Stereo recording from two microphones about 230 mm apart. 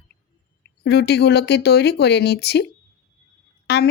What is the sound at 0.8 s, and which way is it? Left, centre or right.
Speech, left.